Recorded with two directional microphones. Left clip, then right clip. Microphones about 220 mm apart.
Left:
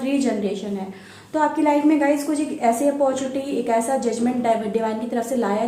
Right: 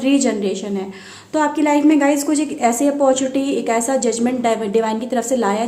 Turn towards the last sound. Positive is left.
turn(degrees=-40)  # may be behind; listen again after turning